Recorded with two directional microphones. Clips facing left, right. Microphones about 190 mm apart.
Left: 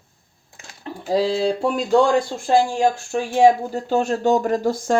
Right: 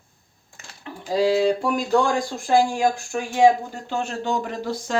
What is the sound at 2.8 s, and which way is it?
Speech, 30° left (ahead or behind).